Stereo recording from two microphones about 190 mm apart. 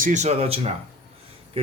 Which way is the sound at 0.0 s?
40° right (ahead or behind).